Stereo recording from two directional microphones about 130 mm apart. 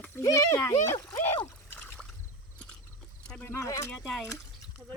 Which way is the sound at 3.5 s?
25° left (ahead or behind).